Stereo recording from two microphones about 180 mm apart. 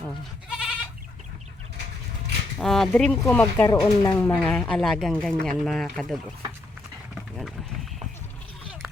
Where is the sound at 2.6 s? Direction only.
Centre (ahead or behind).